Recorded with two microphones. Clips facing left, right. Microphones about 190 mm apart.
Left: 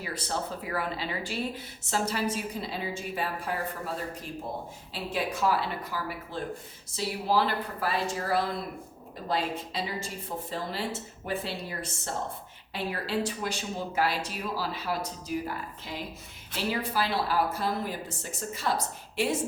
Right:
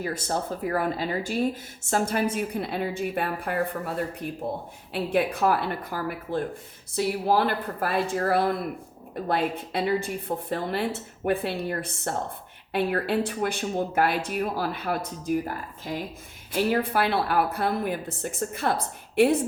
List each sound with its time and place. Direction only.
0.0 s speech: 45° right (ahead or behind)
4.9 s speech: 60° right (ahead or behind)